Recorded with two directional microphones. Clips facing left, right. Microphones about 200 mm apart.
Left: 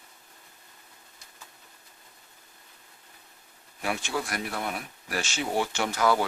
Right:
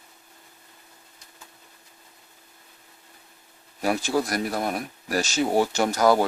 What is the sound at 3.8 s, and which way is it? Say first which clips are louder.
Speech: right 7 dB; 40° right (ahead or behind).